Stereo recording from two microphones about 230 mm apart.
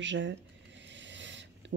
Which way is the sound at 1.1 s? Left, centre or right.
Right.